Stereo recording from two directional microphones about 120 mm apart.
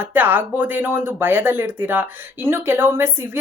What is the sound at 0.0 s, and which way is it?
Speech, 15° right (ahead or behind).